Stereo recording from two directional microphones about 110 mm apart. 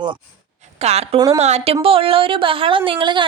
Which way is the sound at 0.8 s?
75° right (ahead or behind).